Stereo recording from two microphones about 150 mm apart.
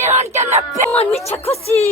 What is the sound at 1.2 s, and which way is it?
Speech, 45° left (ahead or behind).